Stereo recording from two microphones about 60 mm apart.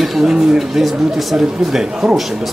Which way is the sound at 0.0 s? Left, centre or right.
Centre.